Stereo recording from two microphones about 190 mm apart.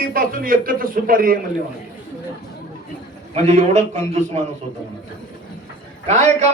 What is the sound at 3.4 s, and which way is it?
Speech, 35° right (ahead or behind).